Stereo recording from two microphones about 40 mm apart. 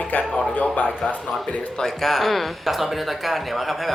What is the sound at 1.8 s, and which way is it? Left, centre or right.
Speech, centre.